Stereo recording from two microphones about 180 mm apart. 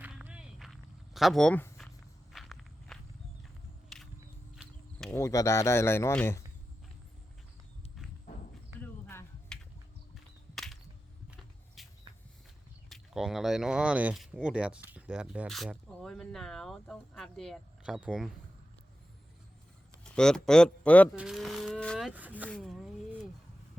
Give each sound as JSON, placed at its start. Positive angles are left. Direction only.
{"t": 0.0, "sound": "a sound", "side_deg": -5}
{"t": 2.3, "sound": "walk", "side_deg": 0}
{"t": 3.8, "sound": "single-lens reflex camera", "side_deg": 5}
{"t": 4.5, "sound": "a sound", "side_deg": 0}
{"t": 5.1, "sound": "speech", "side_deg": 15}
{"t": 8.8, "sound": "finger snapping", "side_deg": 10}
{"t": 10.5, "sound": "a sound", "side_deg": 0}
{"t": 11.3, "sound": "vehicle", "side_deg": 0}
{"t": 12.9, "sound": "speech", "side_deg": 0}
{"t": 20.1, "sound": "speech", "side_deg": 5}
{"t": 22.4, "sound": "speech", "side_deg": 5}